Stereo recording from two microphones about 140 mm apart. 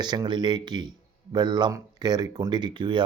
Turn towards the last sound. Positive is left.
turn(degrees=-35)  # may be behind; listen again after turning